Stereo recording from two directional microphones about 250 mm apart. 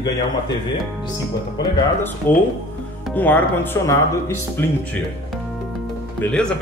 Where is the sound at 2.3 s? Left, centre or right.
Centre.